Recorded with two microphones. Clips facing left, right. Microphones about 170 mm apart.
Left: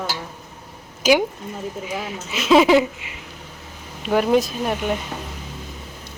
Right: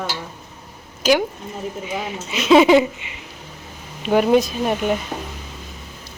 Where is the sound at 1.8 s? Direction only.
Centre (ahead or behind).